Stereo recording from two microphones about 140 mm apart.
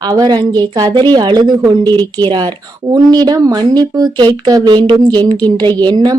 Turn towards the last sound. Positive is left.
turn(degrees=-30)  # may be behind; listen again after turning